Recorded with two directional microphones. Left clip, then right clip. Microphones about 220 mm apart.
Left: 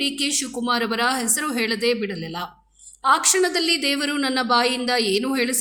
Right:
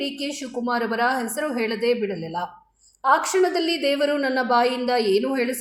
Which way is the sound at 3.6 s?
90° left.